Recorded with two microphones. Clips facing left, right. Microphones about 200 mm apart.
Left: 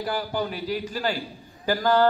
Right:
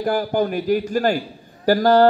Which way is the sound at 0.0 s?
50° right (ahead or behind).